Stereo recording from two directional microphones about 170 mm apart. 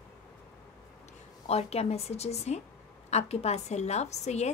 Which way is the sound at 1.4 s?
40° left (ahead or behind).